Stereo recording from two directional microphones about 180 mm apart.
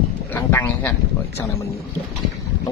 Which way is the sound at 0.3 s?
10° left (ahead or behind).